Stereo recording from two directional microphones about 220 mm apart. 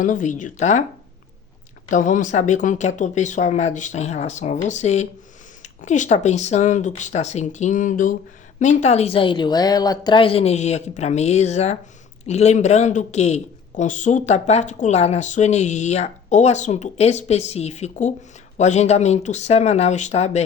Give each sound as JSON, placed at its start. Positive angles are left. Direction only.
{"t": 0.0, "sound": "a man's voice", "side_deg": 35}
{"t": 1.9, "sound": "a man's voice", "side_deg": 35}